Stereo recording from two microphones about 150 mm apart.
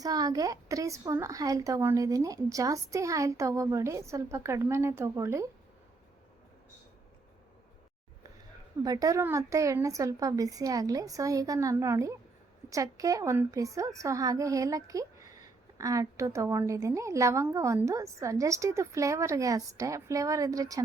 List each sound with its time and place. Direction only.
0.0 s a woman's voice: 25° right (ahead or behind)
8.8 s a woman's voice: 25° right (ahead or behind)